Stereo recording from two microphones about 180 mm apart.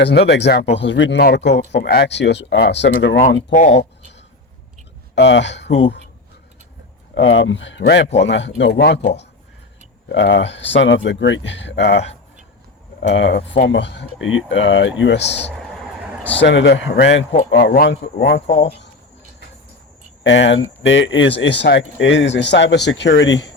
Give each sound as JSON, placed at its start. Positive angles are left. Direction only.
{"t": 0.0, "sound": "speech", "side_deg": 65}
{"t": 0.8, "sound": "speech", "side_deg": 85}
{"t": 3.2, "sound": "speech", "side_deg": 45}
{"t": 5.1, "sound": "speech", "side_deg": 75}
{"t": 7.3, "sound": "speech", "side_deg": 90}
{"t": 8.3, "sound": "speech", "side_deg": 85}
{"t": 10.1, "sound": "speech", "side_deg": 80}
{"t": 13.0, "sound": "speech", "side_deg": 90}
{"t": 17.5, "sound": "speech", "side_deg": 65}
{"t": 18.2, "sound": "speech", "side_deg": 75}
{"t": 18.4, "sound": "speech", "side_deg": 35}
{"t": 20.2, "sound": "speech", "side_deg": 90}